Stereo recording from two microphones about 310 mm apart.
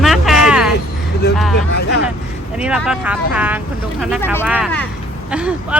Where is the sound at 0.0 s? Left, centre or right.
Centre.